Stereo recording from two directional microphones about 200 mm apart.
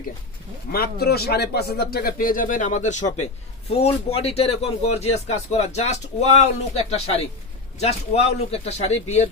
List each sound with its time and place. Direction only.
0.7 s a man's voice: 50° left (ahead or behind); by 9.3 s 35° left (ahead or behind)